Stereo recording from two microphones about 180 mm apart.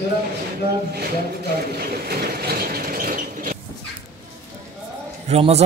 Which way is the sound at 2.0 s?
55° right (ahead or behind).